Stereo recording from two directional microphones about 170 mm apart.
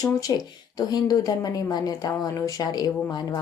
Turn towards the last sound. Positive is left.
turn(degrees=25)  # may be behind; listen again after turning